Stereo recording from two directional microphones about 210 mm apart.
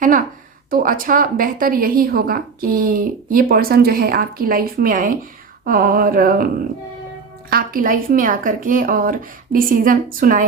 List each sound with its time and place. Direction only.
0.7 s a woman's voice: 40° right (ahead or behind)
7.5 s a woman's voice: 40° right (ahead or behind)